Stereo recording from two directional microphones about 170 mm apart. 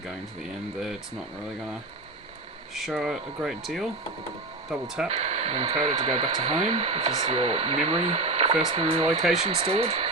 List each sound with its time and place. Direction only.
2.7 s speech: centre (ahead or behind)
5.0 s speech: 40° right (ahead or behind)
5.7 s speech: 25° right (ahead or behind)